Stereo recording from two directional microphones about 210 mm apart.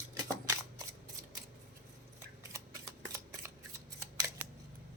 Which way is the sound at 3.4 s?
10° right (ahead or behind).